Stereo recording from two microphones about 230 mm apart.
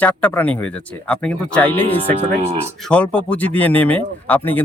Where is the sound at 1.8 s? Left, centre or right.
Right.